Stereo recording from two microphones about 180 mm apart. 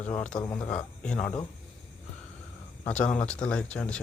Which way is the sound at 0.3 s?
20° left (ahead or behind).